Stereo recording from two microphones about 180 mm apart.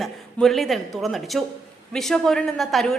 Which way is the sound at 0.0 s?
Centre (ahead or behind).